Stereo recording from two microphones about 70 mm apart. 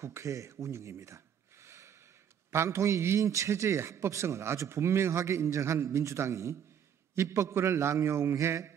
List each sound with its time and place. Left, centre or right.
0.0 s a man's voice: right